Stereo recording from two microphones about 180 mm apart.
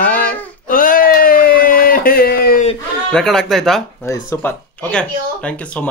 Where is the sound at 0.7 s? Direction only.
50° left (ahead or behind).